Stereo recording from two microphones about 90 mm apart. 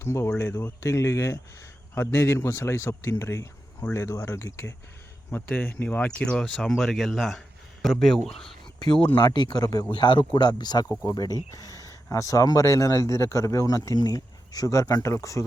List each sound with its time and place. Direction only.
0.0 s speech: 35° left (ahead or behind)
5.5 s speech: 20° left (ahead or behind); by 8.4 s centre (ahead or behind)
9.1 s speech: 55° left (ahead or behind)
9.9 s speech: 60° left (ahead or behind); by 11.3 s 45° left (ahead or behind)
11.5 s a sound: 40° left (ahead or behind)
12.0 s speech: 35° left (ahead or behind)